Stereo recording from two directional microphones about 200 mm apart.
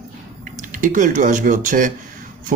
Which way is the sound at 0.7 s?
40° right (ahead or behind).